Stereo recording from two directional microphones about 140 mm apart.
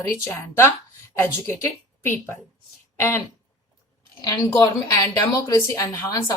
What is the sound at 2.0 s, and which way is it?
A woman's voice, 15° left (ahead or behind).